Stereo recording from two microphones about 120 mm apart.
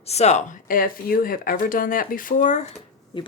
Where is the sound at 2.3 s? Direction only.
90° left.